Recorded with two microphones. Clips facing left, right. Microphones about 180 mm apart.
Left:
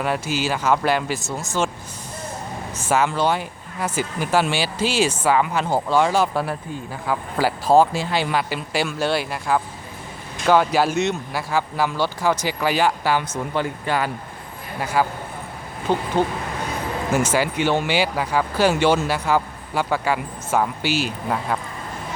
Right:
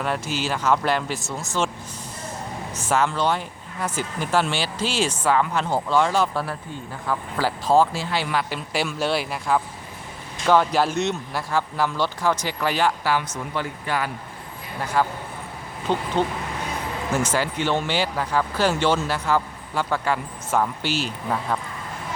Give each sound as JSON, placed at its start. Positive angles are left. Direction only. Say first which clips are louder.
{"t": 0.0, "sound": "speech", "louder": "left 3 dB", "side_deg": 5}
{"t": 2.9, "sound": "speech", "louder": "left 2 dB", "side_deg": 5}
{"t": 8.4, "sound": "speech", "louder": "left 2 dB", "side_deg": 0}
{"t": 13.1, "sound": "speech", "louder": "left 3 dB", "side_deg": 25}
{"t": 14.8, "sound": "speech", "louder": "left 2 dB", "side_deg": 10}
{"t": 17.1, "sound": "speech", "louder": "left 3 dB", "side_deg": 10}